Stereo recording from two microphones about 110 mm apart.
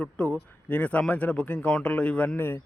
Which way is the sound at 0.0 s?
10° left (ahead or behind).